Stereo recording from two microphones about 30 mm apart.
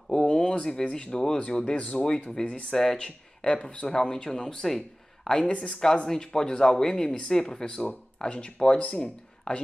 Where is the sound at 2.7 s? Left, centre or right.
Centre.